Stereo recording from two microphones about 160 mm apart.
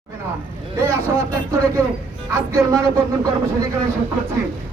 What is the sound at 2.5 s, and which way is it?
Speech, 15° right (ahead or behind).